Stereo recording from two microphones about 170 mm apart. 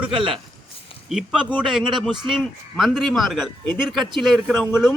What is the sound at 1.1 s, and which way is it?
Speech, 5° right (ahead or behind).